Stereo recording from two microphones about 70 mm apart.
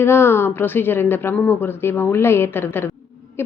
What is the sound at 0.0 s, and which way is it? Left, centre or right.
A woman's voice, left.